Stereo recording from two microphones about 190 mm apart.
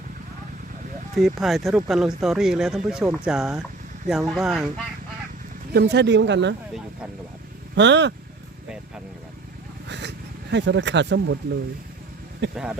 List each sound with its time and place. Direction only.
1.1 s speech: centre (ahead or behind)
5.7 s speech: 60° right (ahead or behind)
7.8 s speech: 65° right (ahead or behind)
9.9 s a sound: 65° right (ahead or behind)
12.4 s speech: 65° right (ahead or behind)